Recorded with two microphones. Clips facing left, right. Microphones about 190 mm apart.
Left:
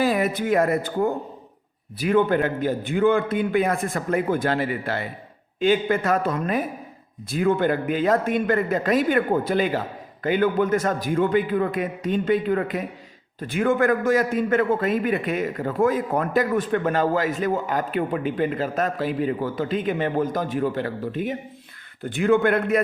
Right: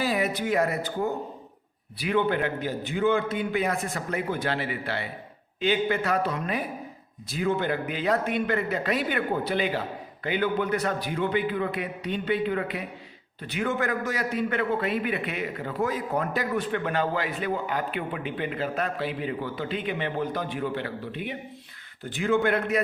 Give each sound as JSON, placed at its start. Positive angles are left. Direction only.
{"t": 0.0, "sound": "a man's voice", "side_deg": 50}